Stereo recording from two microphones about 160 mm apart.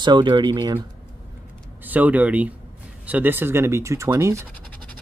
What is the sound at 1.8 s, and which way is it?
Speech, 10° right (ahead or behind).